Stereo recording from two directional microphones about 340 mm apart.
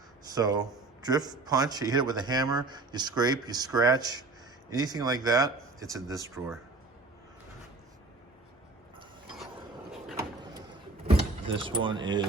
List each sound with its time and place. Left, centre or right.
0.3 s speech: centre
9.9 s vehicle: centre
11.6 s speech: centre